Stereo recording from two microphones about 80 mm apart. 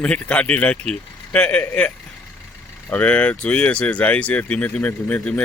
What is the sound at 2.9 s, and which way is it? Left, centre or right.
Speech, centre.